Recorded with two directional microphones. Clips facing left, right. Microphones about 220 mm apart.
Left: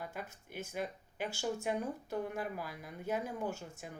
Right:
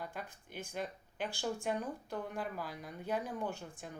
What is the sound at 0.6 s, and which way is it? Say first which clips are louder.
Speech: left 1 dB; 5° left (ahead or behind).